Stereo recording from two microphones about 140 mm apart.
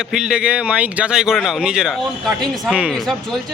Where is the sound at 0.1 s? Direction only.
5° right (ahead or behind).